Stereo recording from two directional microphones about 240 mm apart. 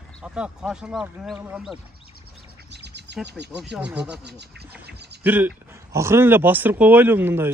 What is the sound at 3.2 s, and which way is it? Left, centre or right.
Speech, right.